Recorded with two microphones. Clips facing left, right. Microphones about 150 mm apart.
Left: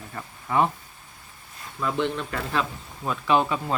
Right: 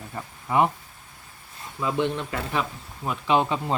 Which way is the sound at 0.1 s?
10° right (ahead or behind).